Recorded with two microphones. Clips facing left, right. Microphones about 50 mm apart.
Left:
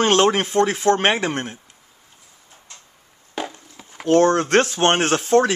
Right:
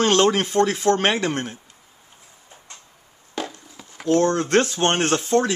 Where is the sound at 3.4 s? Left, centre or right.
Centre.